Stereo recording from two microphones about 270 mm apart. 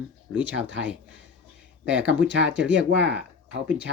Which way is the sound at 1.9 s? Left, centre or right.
Centre.